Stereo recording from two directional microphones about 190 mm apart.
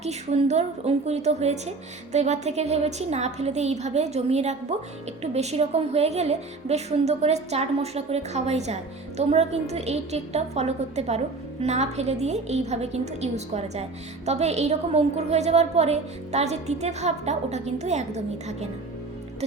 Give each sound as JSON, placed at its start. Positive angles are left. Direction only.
{"t": 0.0, "sound": "a woman's voice", "side_deg": -35}